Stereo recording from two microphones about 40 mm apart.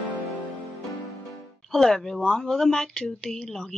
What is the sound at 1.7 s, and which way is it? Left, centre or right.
Speech, centre.